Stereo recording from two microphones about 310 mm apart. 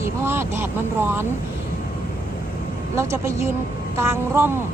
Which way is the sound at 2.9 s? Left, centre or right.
Centre.